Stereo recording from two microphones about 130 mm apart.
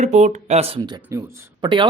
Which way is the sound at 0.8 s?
30° right (ahead or behind).